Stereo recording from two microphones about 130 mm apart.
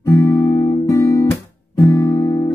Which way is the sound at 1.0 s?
25° left (ahead or behind).